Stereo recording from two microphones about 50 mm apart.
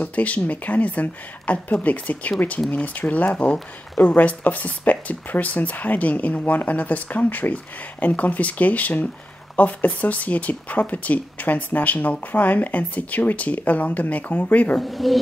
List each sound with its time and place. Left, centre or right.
0.0 s speech: left
14.8 s speech: centre